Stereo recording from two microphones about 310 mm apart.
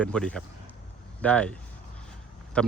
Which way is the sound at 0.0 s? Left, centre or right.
Centre.